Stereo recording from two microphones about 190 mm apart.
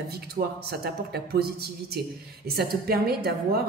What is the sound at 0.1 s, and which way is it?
A woman's voice, 55° right (ahead or behind).